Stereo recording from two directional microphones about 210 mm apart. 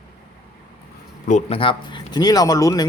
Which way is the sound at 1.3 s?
30° left (ahead or behind).